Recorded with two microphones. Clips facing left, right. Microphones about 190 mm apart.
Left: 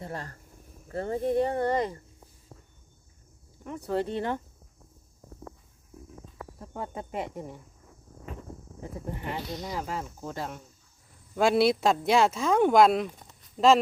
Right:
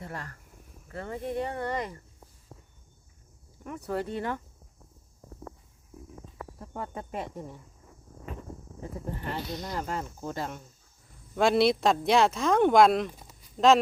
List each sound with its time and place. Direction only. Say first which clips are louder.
0.0 s speech: left 3 dB; 30° left (ahead or behind)
3.7 s speech: left 3 dB; 25° left (ahead or behind)
6.7 s speech: left 2 dB; 20° left (ahead or behind)
9.3 s speech: even; 5° left (ahead or behind)